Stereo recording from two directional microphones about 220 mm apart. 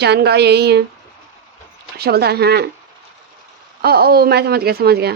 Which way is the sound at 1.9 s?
45° right (ahead or behind).